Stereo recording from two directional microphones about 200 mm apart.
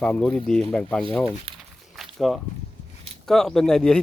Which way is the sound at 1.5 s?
30° right (ahead or behind).